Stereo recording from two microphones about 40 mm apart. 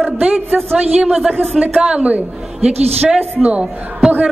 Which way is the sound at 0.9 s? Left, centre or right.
Right.